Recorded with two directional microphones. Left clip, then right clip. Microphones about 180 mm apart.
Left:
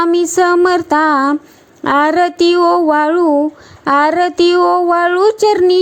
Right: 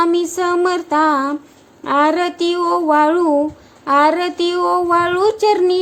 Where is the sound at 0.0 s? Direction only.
35° left (ahead or behind).